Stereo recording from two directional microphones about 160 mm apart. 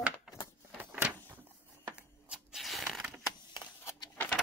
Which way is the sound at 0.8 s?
10° right (ahead or behind).